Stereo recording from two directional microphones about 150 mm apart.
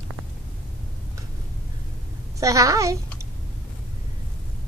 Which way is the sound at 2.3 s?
20° right (ahead or behind).